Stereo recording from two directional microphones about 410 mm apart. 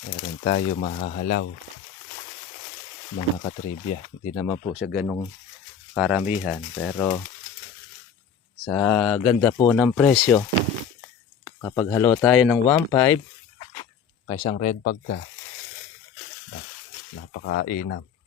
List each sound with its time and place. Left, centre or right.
0.1 s speech: centre
3.2 s speech: centre
8.6 s speech: centre
11.4 s speech: centre
14.3 s speech: centre
17.3 s speech: left